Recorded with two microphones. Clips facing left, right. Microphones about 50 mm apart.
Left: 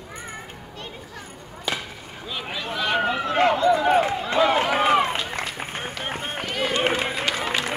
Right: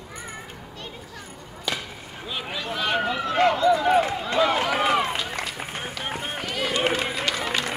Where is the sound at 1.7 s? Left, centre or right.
Centre.